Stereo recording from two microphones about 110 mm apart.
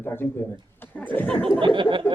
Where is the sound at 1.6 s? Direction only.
45° right (ahead or behind).